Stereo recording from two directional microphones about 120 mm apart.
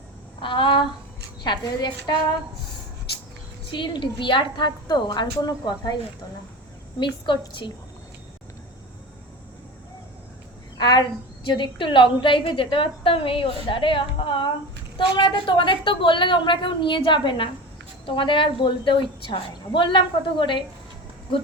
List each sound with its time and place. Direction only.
0.4 s a sound: 40° left (ahead or behind)
1.5 s a woman's voice: 40° left (ahead or behind)
3.7 s a woman's voice: 40° left (ahead or behind)
7.0 s a woman's voice: 40° left (ahead or behind)
10.8 s a sound: 40° left (ahead or behind)
11.4 s a woman's voice: 40° left (ahead or behind)